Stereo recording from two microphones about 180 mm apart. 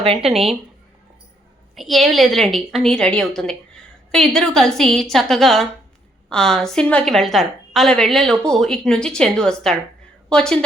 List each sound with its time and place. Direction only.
0.0 s speech: 35° right (ahead or behind)
1.7 s a woman's voice: centre (ahead or behind)